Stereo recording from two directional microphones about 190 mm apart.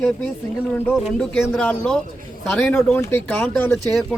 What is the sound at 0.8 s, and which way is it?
Speech, 5° left (ahead or behind).